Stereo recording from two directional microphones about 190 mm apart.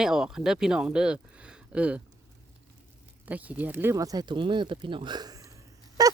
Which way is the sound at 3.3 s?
10° right (ahead or behind).